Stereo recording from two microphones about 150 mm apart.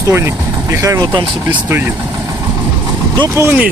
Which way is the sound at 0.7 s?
20° right (ahead or behind).